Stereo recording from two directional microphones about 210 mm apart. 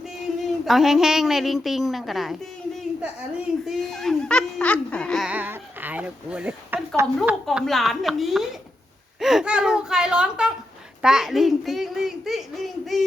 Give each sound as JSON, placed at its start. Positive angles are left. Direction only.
{"t": 0.6, "sound": "a child's voice", "side_deg": 0}
{"t": 3.7, "sound": "a sound", "side_deg": 0}
{"t": 7.2, "sound": "a child's voice", "side_deg": 0}